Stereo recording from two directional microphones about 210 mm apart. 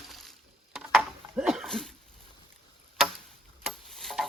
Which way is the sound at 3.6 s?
Centre (ahead or behind).